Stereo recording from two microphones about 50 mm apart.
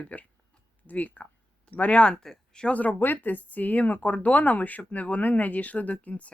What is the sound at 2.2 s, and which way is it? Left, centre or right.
Speech, centre.